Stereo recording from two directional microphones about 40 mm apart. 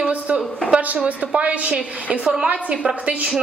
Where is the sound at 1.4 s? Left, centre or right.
Right.